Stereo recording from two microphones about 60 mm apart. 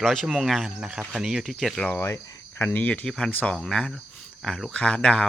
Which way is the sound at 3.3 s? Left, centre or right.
Left.